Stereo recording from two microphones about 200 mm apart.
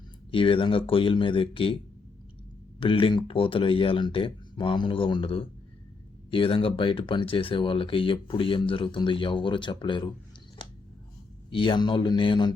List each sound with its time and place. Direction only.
0.3 s speech: 25° left (ahead or behind)
2.8 s speech: 25° left (ahead or behind)
11.5 s speech: 25° left (ahead or behind)